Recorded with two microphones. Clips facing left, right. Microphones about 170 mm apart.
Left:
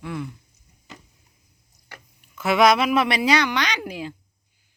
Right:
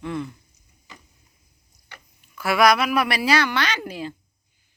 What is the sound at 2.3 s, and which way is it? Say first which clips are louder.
A woman's voice: left 1 dB; 20° left (ahead or behind).